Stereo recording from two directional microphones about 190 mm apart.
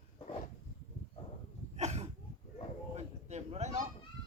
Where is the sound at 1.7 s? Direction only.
35° right (ahead or behind).